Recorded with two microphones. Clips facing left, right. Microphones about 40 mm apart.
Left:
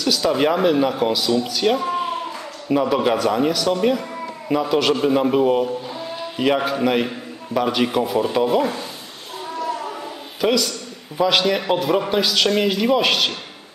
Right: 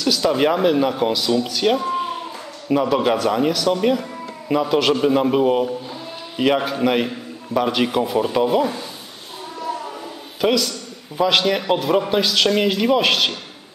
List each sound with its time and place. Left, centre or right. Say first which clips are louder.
0.0 s a man's voice: right 1 dB; centre
6.6 s a man's voice: even; centre
9.8 s a sound: left 2 dB; left
10.4 s speech: even; centre